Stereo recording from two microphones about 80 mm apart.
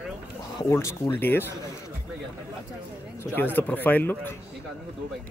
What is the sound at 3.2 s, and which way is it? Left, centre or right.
Speech, left.